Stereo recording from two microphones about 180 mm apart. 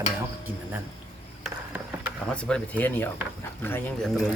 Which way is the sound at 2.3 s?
5° left (ahead or behind).